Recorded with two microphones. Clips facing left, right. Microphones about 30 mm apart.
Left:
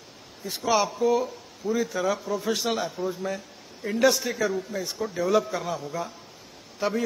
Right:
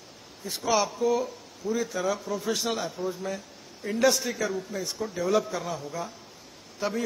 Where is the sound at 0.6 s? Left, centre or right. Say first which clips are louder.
Left 2 dB; centre.